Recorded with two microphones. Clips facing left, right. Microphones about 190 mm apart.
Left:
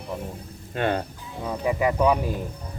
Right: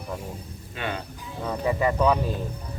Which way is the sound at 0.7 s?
50° left (ahead or behind).